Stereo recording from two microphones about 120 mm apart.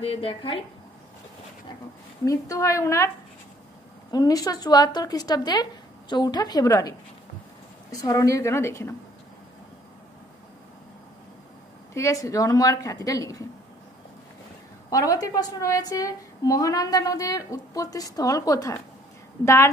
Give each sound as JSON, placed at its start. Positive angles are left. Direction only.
{"t": 0.0, "sound": "speech", "side_deg": 50}
{"t": 2.2, "sound": "a woman's voice", "side_deg": 30}
{"t": 4.1, "sound": "a woman's voice", "side_deg": 30}
{"t": 11.9, "sound": "a woman's voice", "side_deg": 25}
{"t": 14.9, "sound": "a woman's voice", "side_deg": 30}